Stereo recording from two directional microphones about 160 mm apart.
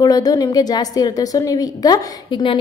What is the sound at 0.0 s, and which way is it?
A woman's voice, 25° left (ahead or behind).